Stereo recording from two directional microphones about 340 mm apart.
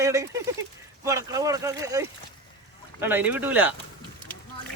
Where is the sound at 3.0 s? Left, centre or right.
Centre.